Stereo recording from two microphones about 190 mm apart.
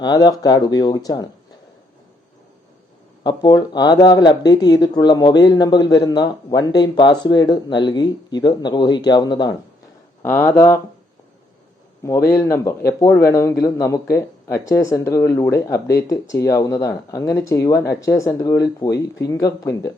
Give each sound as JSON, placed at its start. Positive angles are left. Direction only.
{"t": 0.0, "sound": "speech", "side_deg": 20}
{"t": 3.2, "sound": "speech", "side_deg": 20}
{"t": 10.2, "sound": "speech", "side_deg": 10}
{"t": 12.3, "sound": "speech", "side_deg": 15}